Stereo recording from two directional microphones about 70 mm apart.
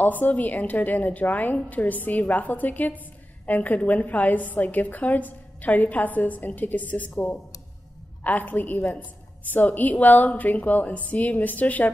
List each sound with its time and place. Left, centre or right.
0.0 s a woman's voice: left